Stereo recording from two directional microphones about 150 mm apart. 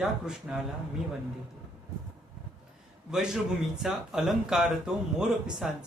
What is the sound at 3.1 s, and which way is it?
Speech, 5° right (ahead or behind).